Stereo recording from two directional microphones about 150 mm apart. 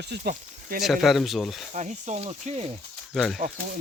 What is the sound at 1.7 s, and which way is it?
Speech, 50° right (ahead or behind).